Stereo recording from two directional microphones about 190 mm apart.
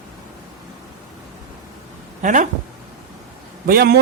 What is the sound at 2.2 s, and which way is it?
Speech, 40° right (ahead or behind).